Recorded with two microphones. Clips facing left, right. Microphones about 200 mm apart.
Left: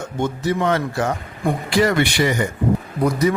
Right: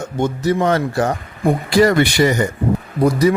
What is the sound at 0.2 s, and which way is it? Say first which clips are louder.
Speech: right 4 dB; 40° right (ahead or behind).